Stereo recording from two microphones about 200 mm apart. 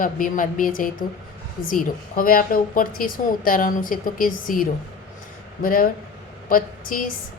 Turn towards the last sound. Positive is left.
turn(degrees=45)  # may be behind; listen again after turning